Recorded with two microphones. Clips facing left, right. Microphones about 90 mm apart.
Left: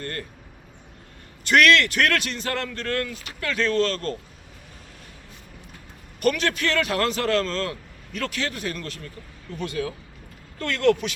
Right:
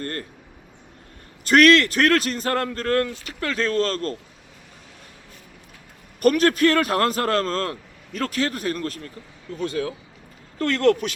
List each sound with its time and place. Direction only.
0.0 s a man's voice: 35° right (ahead or behind)
1.5 s a man's voice: 35° right (ahead or behind)
6.2 s a man's voice: 45° right (ahead or behind)